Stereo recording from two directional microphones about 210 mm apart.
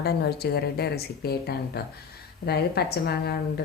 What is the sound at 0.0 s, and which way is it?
Speech, 50° left (ahead or behind).